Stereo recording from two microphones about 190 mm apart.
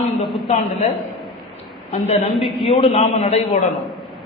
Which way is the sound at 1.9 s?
35° left (ahead or behind).